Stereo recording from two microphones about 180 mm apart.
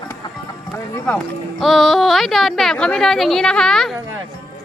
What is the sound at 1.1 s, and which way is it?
Speech, centre (ahead or behind).